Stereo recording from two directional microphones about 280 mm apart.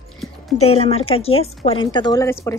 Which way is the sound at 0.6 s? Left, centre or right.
Left.